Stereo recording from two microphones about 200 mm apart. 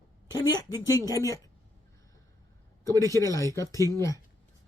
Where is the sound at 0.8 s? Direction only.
20° left (ahead or behind).